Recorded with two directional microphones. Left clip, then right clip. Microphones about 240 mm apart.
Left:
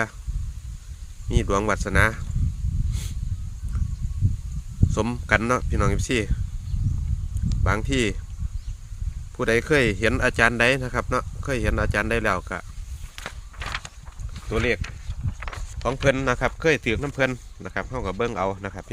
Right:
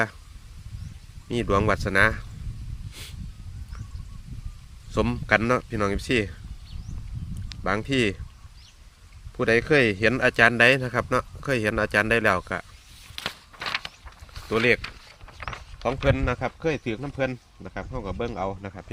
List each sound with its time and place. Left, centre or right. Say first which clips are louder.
1.3 s speech: right 1 dB; centre
4.9 s speech: even; centre
7.5 s speech: even; centre
9.4 s speech: even; centre
13.1 s a sound: right 3 dB; right
14.4 s speech: right 3 dB; centre
16.0 s speech: left 5 dB; centre